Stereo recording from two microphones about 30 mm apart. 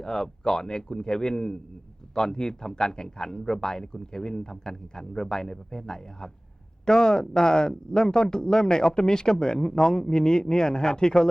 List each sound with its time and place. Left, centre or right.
0.0 s speech: centre